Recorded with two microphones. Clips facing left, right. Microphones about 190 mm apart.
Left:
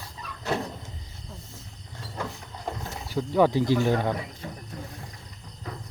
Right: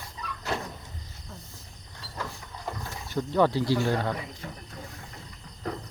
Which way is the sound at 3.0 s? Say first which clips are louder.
Left 2 dB; 10° left (ahead or behind).